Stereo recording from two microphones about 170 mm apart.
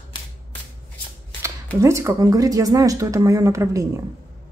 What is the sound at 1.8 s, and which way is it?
Speech, 15° right (ahead or behind).